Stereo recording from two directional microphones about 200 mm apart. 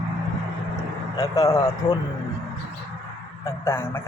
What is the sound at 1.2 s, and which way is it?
Speech, 20° left (ahead or behind).